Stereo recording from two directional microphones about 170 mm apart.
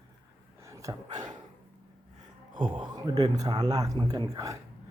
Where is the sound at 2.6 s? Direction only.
30° right (ahead or behind).